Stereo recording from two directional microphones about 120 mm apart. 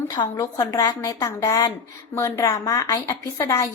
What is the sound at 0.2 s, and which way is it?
A woman's voice, 30° left (ahead or behind).